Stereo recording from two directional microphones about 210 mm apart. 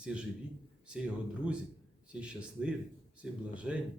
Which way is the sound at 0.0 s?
5° right (ahead or behind).